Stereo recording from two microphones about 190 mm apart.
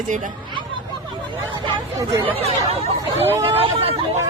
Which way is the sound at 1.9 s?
15° right (ahead or behind).